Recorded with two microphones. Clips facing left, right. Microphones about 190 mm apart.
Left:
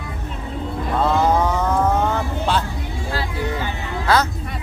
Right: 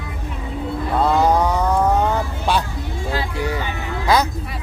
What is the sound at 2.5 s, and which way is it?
Speech, 15° right (ahead or behind).